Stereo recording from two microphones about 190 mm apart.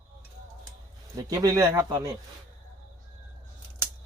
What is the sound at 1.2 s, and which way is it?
Speech, 20° right (ahead or behind).